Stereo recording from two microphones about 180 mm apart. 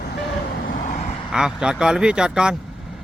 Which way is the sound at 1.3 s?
5° right (ahead or behind).